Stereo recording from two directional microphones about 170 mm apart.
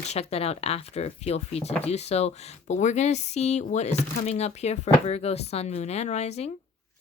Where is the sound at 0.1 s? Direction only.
35° left (ahead or behind).